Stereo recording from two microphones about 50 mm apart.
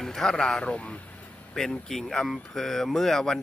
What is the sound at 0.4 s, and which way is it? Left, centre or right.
Speech, left.